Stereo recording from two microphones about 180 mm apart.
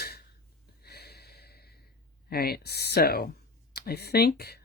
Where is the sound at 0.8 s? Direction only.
60° left (ahead or behind).